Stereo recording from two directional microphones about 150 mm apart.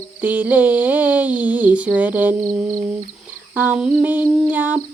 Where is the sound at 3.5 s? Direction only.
10° right (ahead or behind).